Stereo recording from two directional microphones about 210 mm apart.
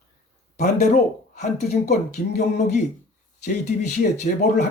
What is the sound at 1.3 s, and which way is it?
Speech, 35° left (ahead or behind).